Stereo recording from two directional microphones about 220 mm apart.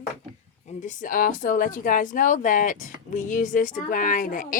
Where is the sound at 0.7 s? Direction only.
35° left (ahead or behind).